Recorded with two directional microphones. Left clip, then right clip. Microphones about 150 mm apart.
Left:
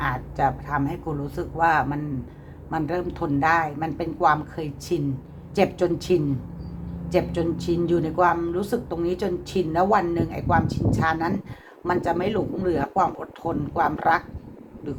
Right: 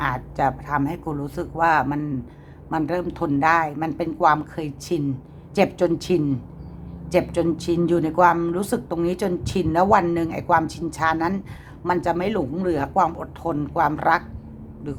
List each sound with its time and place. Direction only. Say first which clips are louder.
0.0 s speech: right 1 dB; 35° right (ahead or behind)